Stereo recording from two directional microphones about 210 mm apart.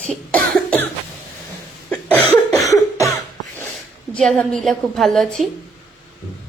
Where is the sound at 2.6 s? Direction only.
15° left (ahead or behind).